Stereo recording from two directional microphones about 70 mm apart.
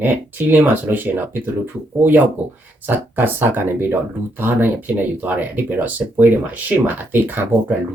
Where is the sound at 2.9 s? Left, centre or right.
Right.